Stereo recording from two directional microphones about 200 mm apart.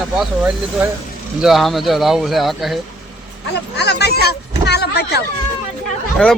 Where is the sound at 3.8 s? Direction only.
55° left (ahead or behind).